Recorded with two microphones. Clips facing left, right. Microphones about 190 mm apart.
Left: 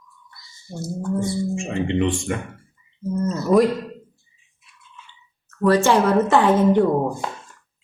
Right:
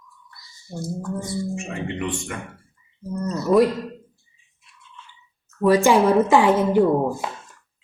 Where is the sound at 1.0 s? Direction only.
25° left (ahead or behind).